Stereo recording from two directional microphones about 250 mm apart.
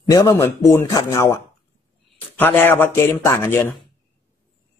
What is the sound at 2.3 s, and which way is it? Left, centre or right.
A man's voice, centre.